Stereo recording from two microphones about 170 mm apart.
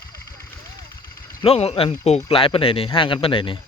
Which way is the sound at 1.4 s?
35° left (ahead or behind).